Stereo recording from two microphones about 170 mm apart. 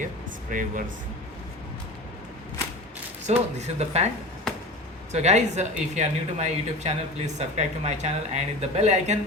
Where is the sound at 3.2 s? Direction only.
40° right (ahead or behind).